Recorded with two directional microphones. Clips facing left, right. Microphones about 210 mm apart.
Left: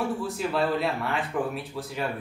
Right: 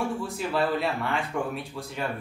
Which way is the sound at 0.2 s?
Centre (ahead or behind).